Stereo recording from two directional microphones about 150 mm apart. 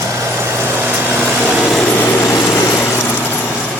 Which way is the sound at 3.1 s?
10° left (ahead or behind).